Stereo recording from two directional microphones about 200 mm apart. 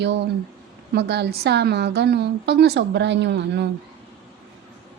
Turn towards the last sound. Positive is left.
turn(degrees=-60)  # may be behind; listen again after turning